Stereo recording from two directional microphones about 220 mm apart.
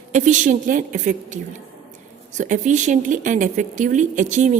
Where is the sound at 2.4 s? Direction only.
35° right (ahead or behind).